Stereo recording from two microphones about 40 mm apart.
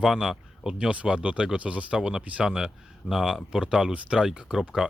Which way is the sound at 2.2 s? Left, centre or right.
Right.